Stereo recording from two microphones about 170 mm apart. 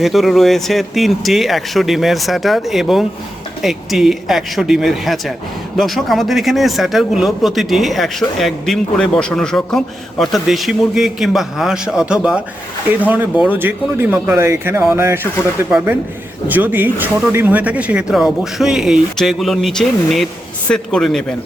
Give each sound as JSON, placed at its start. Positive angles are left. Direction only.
{"t": 0.0, "sound": "speech", "side_deg": 0}
{"t": 16.5, "sound": "speech", "side_deg": -10}